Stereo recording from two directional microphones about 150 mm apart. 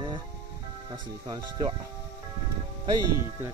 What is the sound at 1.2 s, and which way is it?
Speech, 25° right (ahead or behind).